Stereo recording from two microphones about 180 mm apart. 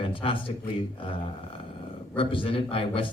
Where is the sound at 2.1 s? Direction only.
30° left (ahead or behind).